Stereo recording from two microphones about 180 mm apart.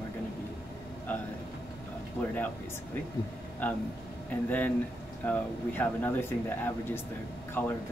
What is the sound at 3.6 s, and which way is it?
Speech, 10° left (ahead or behind).